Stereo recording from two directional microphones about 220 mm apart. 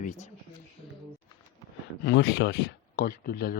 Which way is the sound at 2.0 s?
50° left (ahead or behind).